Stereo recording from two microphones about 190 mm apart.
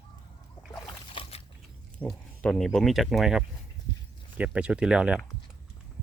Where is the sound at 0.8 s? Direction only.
30° left (ahead or behind).